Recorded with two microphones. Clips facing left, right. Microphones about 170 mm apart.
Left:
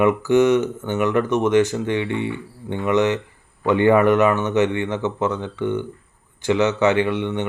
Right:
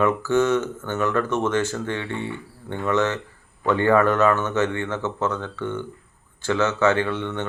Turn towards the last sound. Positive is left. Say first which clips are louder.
# left 4 dB
turn(degrees=15)  # may be behind; listen again after turning